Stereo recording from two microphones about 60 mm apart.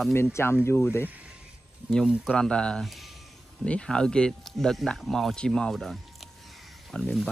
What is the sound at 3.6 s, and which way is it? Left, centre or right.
Speech, centre.